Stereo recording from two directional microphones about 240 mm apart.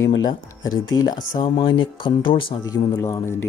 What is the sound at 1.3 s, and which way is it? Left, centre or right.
Speech, centre.